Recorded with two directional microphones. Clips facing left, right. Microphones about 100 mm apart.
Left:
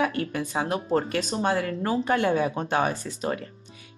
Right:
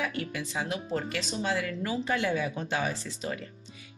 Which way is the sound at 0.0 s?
45° left (ahead or behind).